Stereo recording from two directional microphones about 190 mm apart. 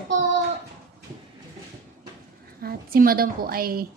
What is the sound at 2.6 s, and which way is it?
A woman's voice, 50° right (ahead or behind).